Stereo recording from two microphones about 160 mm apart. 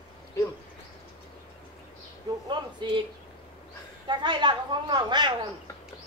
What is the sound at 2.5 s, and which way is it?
Speech, 30° right (ahead or behind).